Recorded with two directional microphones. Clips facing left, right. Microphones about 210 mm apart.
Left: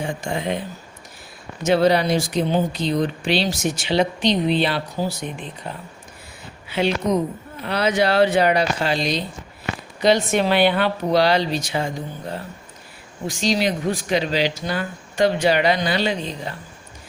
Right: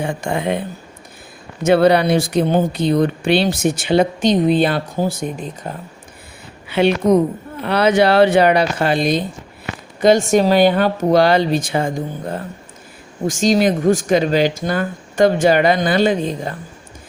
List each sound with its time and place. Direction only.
0.0 s speech: 60° right (ahead or behind)
1.6 s speech: 60° right (ahead or behind); by 5.7 s 45° right (ahead or behind)
6.7 s speech: 60° right (ahead or behind)